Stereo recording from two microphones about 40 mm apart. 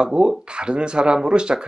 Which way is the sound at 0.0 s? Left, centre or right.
Right.